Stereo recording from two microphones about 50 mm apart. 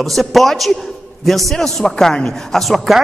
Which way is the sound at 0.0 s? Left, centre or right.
Centre.